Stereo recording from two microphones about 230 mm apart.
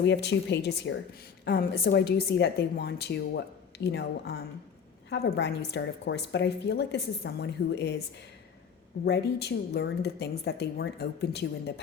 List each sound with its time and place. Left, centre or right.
0.0 s a woman's voice: left
9.0 s a woman's voice: left